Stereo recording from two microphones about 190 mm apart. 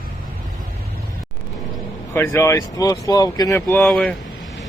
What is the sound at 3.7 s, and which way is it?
Speech, 5° left (ahead or behind).